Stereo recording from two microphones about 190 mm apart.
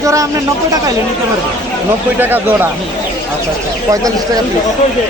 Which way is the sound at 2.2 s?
10° right (ahead or behind).